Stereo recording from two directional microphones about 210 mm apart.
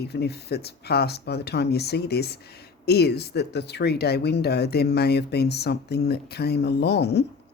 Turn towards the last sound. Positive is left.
turn(degrees=50)  # may be behind; listen again after turning